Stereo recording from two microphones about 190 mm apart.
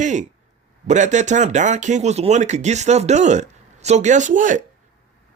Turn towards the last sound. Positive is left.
turn(degrees=-45)  # may be behind; listen again after turning